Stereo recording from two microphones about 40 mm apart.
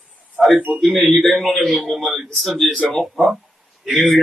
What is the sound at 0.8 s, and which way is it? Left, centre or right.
A man's voice, centre.